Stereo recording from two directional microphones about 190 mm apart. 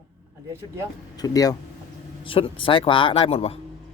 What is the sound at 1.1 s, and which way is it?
Speech, 20° left (ahead or behind).